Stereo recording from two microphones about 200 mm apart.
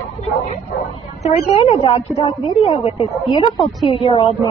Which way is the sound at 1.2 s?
30° left (ahead or behind).